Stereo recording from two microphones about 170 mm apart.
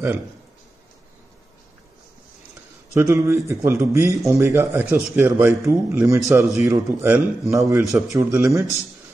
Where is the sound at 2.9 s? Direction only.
15° right (ahead or behind).